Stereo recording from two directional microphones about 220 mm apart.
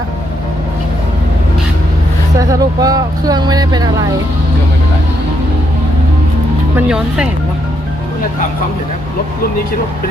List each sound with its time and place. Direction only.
2.5 s speech: 15° right (ahead or behind)
6.7 s speech: 5° right (ahead or behind)